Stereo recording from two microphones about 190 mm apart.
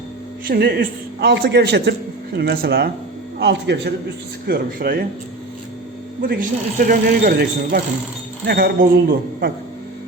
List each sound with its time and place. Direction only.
0.4 s a man's voice: 55° right (ahead or behind)
4.4 s speech: 55° right (ahead or behind)
6.2 s a man's voice: 50° right (ahead or behind)